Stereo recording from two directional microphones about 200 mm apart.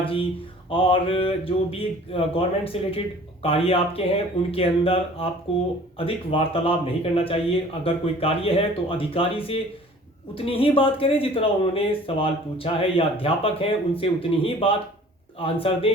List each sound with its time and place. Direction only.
0.0 s speech: 25° left (ahead or behind)